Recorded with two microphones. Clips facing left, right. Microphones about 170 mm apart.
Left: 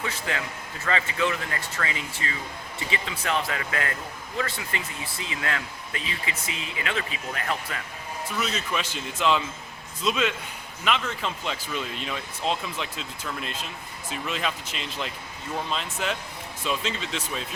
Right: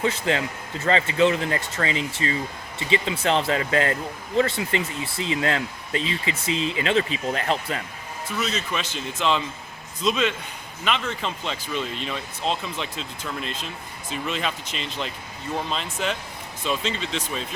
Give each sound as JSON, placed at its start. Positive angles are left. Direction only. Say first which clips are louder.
{"t": 0.0, "sound": "speech", "louder": "right 7 dB", "side_deg": -30}
{"t": 8.4, "sound": "speech", "louder": "right 2 dB", "side_deg": 10}